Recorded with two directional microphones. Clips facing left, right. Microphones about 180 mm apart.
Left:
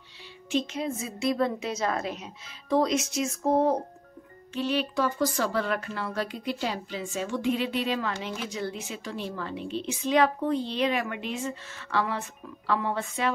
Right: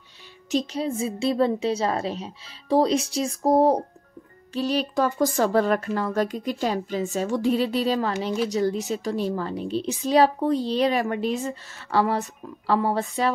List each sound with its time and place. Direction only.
0.5 s speech: 35° right (ahead or behind)